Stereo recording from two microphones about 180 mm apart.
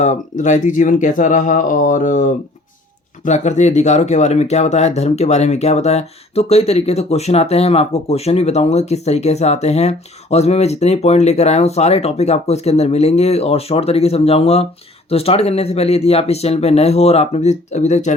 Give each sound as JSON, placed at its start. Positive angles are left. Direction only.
{"t": 0.0, "sound": "speech", "side_deg": 40}
{"t": 3.2, "sound": "speech", "side_deg": 40}